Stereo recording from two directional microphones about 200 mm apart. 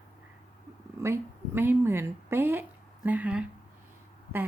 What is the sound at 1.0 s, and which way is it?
Speech, 10° right (ahead or behind).